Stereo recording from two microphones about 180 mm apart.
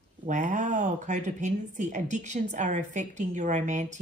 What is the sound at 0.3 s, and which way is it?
A woman's voice, 45° right (ahead or behind).